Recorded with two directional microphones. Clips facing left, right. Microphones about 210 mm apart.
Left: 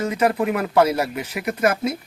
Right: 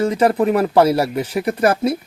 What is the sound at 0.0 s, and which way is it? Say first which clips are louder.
Speech: right 5 dB; 30° right (ahead or behind).